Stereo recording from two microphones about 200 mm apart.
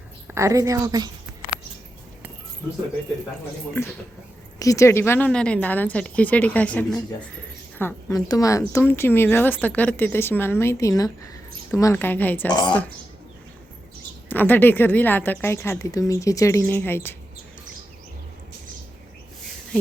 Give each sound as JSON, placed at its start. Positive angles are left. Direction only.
{"t": 0.3, "sound": "a woman's voice", "side_deg": -15}
{"t": 4.6, "sound": "a woman's voice", "side_deg": 15}
{"t": 14.3, "sound": "a woman's voice", "side_deg": 10}